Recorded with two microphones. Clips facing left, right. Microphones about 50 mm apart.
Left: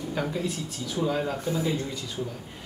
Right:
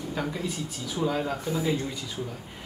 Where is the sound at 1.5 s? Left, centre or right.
Centre.